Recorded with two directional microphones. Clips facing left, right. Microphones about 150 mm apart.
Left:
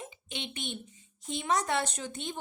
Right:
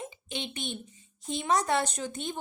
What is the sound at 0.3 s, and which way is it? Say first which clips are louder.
A woman's voice: right 2 dB; 40° right (ahead or behind).